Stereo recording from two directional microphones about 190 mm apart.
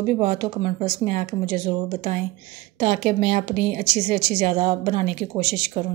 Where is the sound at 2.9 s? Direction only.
50° right (ahead or behind).